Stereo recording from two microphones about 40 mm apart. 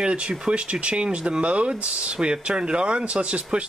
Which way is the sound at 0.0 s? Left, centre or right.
Right.